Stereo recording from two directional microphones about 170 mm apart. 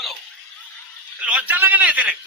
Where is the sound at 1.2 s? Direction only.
5° right (ahead or behind).